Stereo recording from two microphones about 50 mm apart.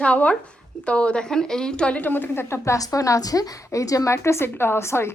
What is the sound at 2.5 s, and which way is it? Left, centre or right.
A woman's voice, left.